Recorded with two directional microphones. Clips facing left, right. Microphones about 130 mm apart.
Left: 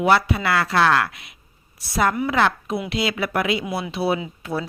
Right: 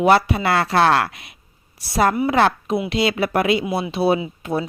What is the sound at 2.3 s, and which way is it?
Speech, 30° right (ahead or behind).